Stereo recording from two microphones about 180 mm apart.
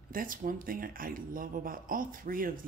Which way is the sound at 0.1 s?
50° right (ahead or behind).